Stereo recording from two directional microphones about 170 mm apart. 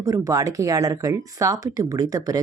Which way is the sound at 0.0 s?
20° right (ahead or behind).